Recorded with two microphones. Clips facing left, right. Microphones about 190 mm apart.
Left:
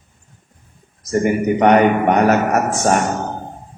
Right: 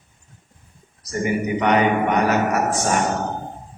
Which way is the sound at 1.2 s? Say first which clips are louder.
Left 5 dB; 50° left (ahead or behind).